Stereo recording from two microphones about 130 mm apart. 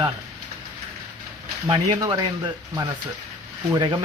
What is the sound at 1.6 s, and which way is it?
Speech, 35° right (ahead or behind).